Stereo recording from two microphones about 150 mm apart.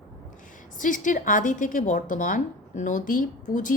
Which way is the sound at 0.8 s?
60° left (ahead or behind).